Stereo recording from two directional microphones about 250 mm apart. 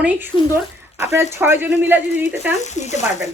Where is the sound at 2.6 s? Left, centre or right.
Left.